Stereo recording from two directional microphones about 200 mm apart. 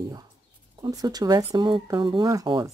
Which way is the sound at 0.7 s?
20° right (ahead or behind).